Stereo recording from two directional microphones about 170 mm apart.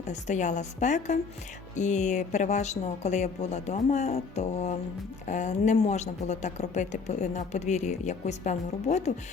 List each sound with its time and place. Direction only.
0.0 s a woman's voice: 45° left (ahead or behind)